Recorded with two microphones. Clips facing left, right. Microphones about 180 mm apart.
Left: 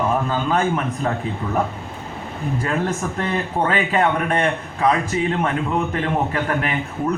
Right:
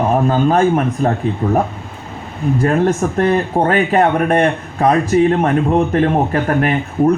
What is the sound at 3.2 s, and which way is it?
A man's voice, 45° right (ahead or behind).